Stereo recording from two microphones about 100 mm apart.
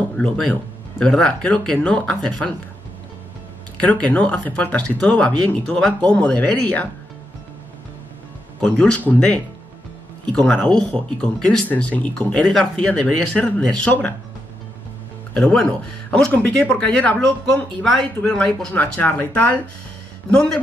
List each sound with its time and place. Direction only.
0.1 s speech: 10° left (ahead or behind)
3.8 s speech: 15° left (ahead or behind)
8.5 s speech: 10° left (ahead or behind)
15.3 s speech: 10° left (ahead or behind)